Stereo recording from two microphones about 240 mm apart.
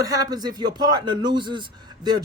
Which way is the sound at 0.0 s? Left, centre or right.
Centre.